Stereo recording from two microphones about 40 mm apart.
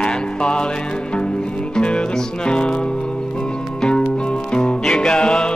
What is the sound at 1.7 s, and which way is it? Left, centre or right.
Music, left.